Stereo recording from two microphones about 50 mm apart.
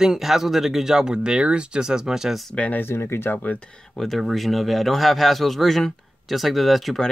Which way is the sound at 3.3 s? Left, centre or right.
Left.